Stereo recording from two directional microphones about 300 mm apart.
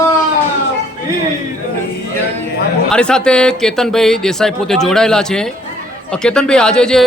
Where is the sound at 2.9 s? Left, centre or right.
Centre.